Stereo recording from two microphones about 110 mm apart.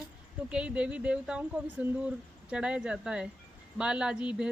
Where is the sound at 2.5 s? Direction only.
10° right (ahead or behind).